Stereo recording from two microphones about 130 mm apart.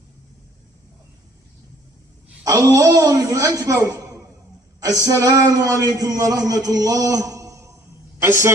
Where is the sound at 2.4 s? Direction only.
25° right (ahead or behind).